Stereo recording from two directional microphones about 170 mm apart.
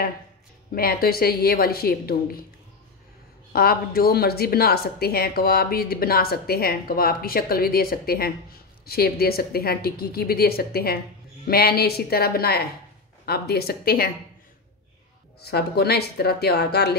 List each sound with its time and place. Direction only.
0.7 s a woman's voice: 60° left (ahead or behind)
3.5 s a woman's voice: 65° left (ahead or behind)
15.4 s a woman's voice: 70° left (ahead or behind)